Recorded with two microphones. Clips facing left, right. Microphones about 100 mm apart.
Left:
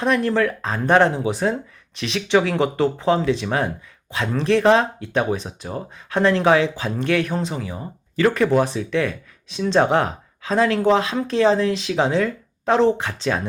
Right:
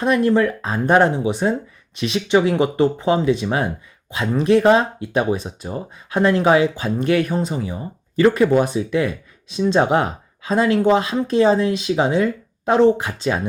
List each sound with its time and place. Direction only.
0.0 s speech: 5° right (ahead or behind)
3.4 s speech: 15° right (ahead or behind)